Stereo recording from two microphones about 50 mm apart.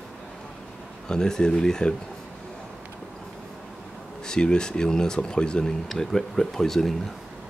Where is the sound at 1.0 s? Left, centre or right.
Centre.